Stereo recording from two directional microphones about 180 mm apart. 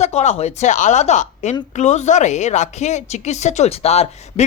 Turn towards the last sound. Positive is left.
turn(degrees=35)  # may be behind; listen again after turning